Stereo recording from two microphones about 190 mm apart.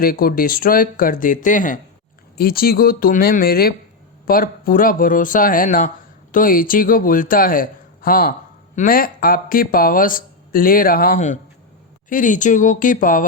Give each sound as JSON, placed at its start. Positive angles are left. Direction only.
{"t": 0.0, "sound": "a man's voice", "side_deg": 50}